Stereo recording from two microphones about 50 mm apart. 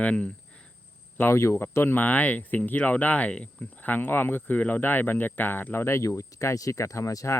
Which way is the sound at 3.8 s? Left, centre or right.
Left.